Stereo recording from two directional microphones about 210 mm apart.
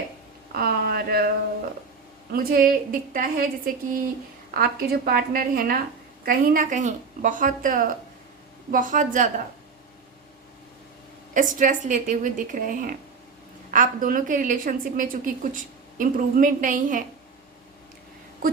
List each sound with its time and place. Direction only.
0.5 s speech: 45° right (ahead or behind)
2.3 s a woman's voice: 45° right (ahead or behind)
4.5 s a woman's voice: 45° right (ahead or behind)
11.3 s a woman's voice: 40° right (ahead or behind)